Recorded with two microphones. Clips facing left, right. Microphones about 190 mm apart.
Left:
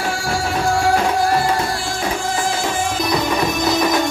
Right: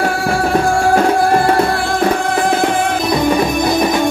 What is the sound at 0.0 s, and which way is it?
Music, 60° right (ahead or behind).